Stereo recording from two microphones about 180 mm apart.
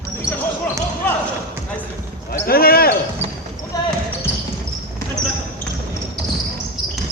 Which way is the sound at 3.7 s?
20° left (ahead or behind).